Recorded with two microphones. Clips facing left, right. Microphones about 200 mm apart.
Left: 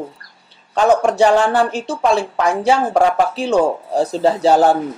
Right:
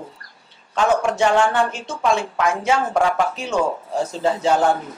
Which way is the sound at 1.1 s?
35° left (ahead or behind).